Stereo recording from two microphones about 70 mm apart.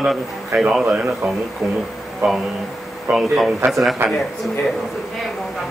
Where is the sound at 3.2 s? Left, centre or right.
Centre.